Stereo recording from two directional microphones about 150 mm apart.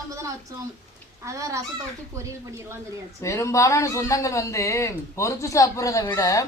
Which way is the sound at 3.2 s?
20° left (ahead or behind).